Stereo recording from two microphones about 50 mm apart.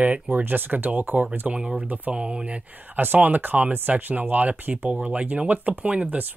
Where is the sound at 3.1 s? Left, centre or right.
Right.